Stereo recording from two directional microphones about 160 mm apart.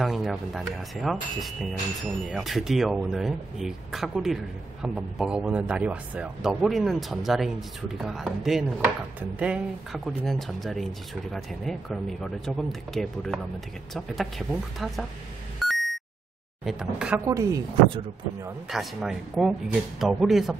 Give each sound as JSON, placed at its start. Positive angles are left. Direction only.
{"t": 0.0, "sound": "speech", "side_deg": 0}
{"t": 15.6, "sound": "beep", "side_deg": 0}
{"t": 16.6, "sound": "speech", "side_deg": -5}
{"t": 17.3, "sound": "speech", "side_deg": -20}
{"t": 18.7, "sound": "speech", "side_deg": 0}